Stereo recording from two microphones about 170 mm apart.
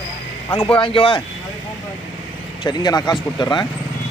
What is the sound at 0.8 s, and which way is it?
Speech, 30° left (ahead or behind).